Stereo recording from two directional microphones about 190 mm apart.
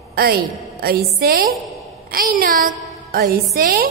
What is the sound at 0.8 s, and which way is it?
A woman's voice, 55° right (ahead or behind).